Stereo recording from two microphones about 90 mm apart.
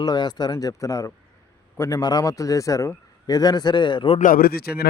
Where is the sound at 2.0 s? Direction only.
45° left (ahead or behind); by 4.2 s 75° left (ahead or behind).